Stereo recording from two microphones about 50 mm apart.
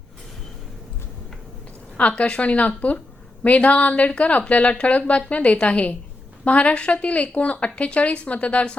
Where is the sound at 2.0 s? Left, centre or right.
Left.